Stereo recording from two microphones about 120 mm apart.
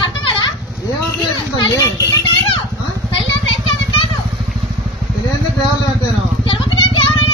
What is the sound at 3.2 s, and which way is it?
Vehicle, 50° left (ahead or behind).